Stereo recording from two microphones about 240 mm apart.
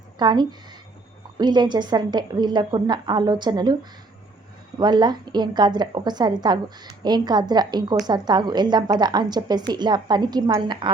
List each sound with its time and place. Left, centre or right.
0.2 s a woman's voice: centre
4.8 s a woman's voice: centre